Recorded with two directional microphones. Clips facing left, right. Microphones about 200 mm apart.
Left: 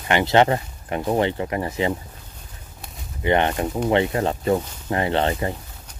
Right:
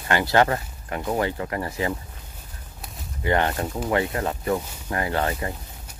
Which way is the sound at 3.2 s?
20° left (ahead or behind).